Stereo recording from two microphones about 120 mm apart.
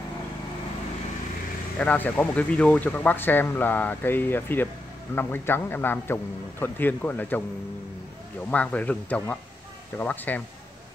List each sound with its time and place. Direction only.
1.8 s speech: 10° left (ahead or behind)
8.5 s speech: 10° left (ahead or behind)